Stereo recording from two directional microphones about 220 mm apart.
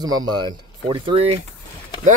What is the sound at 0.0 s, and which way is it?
Speech, 20° right (ahead or behind).